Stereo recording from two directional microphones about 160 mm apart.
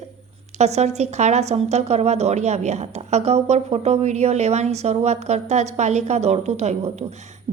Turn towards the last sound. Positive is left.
turn(degrees=-40)  # may be behind; listen again after turning